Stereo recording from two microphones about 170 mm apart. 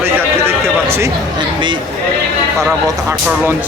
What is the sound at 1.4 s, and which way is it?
Speech, 30° right (ahead or behind).